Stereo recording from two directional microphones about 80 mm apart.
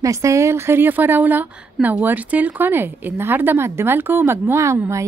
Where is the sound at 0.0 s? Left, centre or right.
Right.